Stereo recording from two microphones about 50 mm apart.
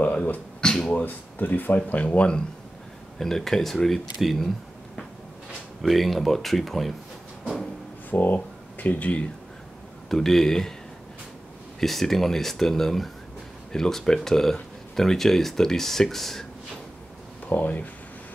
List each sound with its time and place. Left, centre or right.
0.0 s a sound: left
0.6 s speech: centre
0.9 s speech: left
2.0 s speech: centre
3.2 s speech: centre
5.8 s speech: centre
8.1 s speech: left
10.0 s speech: centre
11.8 s speech: centre
17.5 s speech: left